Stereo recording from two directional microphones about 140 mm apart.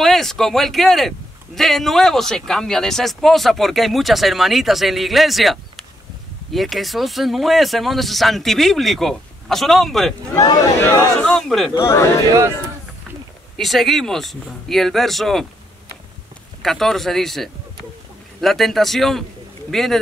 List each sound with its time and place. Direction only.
0.0 s a man's voice: centre (ahead or behind)
10.3 s speech: 25° left (ahead or behind)
11.1 s a man's voice: 5° left (ahead or behind)
11.7 s speech: 20° left (ahead or behind)
12.3 s speech: 20° right (ahead or behind)
13.6 s a man's voice: centre (ahead or behind)
16.6 s a man's voice: centre (ahead or behind)